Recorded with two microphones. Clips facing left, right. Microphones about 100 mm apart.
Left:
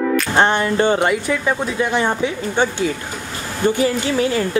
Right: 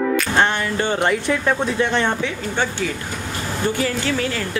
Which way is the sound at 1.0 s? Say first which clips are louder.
Left 1 dB; 5° left (ahead or behind).